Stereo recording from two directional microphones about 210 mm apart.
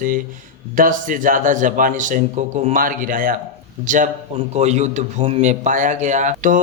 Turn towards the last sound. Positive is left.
turn(degrees=-35)  # may be behind; listen again after turning